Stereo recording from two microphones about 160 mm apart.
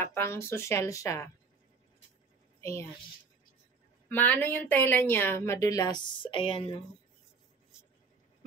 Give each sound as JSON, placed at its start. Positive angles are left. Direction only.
{"t": 0.0, "sound": "a woman's voice", "side_deg": 15}
{"t": 2.6, "sound": "a woman's voice", "side_deg": 20}
{"t": 4.1, "sound": "a woman's voice", "side_deg": 10}